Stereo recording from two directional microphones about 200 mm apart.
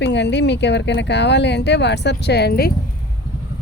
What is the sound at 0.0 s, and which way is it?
Speech, 60° left (ahead or behind).